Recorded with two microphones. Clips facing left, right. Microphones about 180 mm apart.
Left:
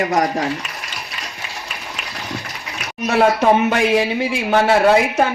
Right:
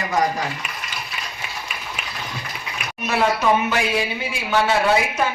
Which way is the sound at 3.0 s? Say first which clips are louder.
Left 5 dB; 45° left (ahead or behind).